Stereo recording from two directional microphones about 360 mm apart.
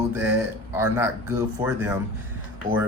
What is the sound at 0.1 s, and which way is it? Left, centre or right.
Speech, centre.